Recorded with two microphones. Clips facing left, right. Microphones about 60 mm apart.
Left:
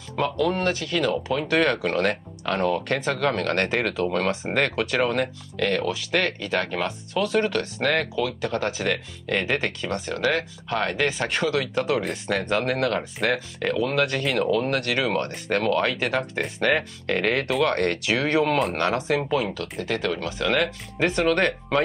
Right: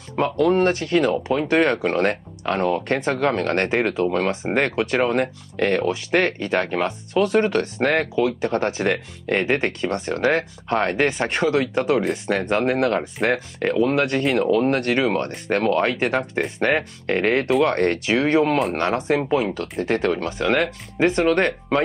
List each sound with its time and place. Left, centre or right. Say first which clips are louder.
0.1 s speech: right 5 dB; right
14.2 s speech: right 4 dB; centre
14.5 s speech: right 4 dB; right